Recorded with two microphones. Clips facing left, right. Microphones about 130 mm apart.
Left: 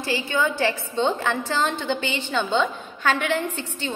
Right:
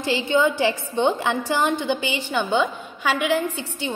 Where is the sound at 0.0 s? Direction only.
20° right (ahead or behind).